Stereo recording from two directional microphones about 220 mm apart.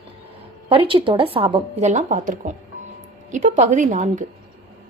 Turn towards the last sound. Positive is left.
turn(degrees=-35)  # may be behind; listen again after turning